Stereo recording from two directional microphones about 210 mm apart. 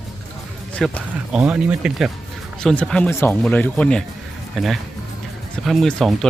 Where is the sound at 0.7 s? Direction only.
5° left (ahead or behind).